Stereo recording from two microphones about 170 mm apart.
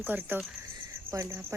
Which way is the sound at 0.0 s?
10° right (ahead or behind).